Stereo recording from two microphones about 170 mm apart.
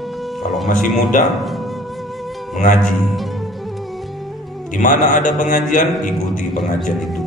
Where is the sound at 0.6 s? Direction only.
50° left (ahead or behind).